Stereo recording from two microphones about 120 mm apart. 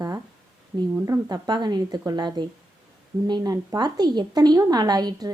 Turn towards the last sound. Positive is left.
turn(degrees=-35)  # may be behind; listen again after turning